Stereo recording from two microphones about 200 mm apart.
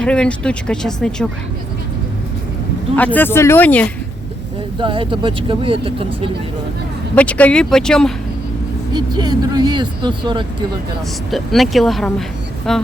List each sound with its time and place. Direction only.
0.0 s speech: 5° left (ahead or behind)
2.9 s speech: 10° left (ahead or behind)
4.8 s speech: 25° right (ahead or behind)
7.2 s speech: 5° left (ahead or behind)
8.9 s speech: 20° right (ahead or behind)
11.3 s speech: centre (ahead or behind)